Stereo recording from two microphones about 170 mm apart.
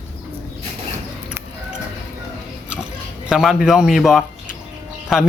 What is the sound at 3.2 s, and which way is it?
Speech, centre (ahead or behind).